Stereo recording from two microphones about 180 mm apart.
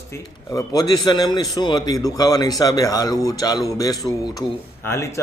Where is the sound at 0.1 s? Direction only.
20° left (ahead or behind).